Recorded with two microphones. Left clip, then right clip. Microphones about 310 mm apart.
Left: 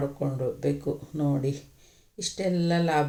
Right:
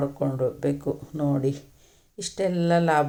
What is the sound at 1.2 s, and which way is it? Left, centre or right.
Speech, centre.